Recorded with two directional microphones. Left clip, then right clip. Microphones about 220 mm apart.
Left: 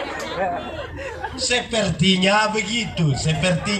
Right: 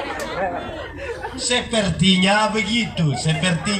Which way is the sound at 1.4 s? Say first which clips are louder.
Even; 15° left (ahead or behind).